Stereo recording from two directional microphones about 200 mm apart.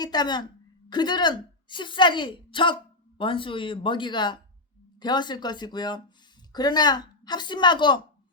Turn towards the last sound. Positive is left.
turn(degrees=20)  # may be behind; listen again after turning